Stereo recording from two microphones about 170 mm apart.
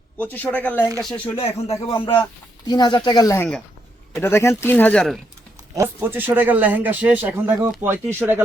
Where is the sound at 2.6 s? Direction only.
25° left (ahead or behind); by 5.1 s 10° left (ahead or behind).